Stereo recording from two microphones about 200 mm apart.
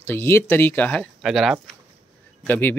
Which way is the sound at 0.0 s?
10° left (ahead or behind).